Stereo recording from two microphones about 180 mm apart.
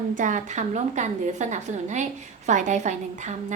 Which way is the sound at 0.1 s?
45° right (ahead or behind).